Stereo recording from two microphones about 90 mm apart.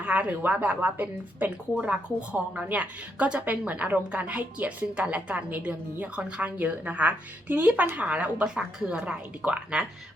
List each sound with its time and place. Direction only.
0.0 s a woman's voice: 15° right (ahead or behind)